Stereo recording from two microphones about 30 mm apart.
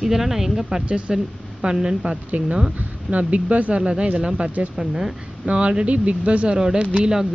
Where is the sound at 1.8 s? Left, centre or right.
Right.